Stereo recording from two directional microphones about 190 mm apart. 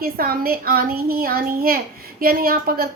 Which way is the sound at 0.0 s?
50° right (ahead or behind).